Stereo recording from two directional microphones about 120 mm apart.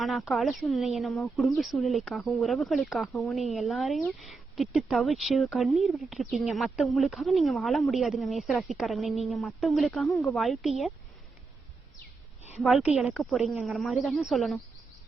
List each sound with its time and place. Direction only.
0.0 s speech: centre (ahead or behind)
13.1 s speech: centre (ahead or behind)